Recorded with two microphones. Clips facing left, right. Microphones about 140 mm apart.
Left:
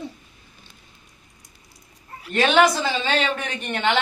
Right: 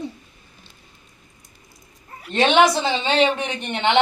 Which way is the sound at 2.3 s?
25° right (ahead or behind).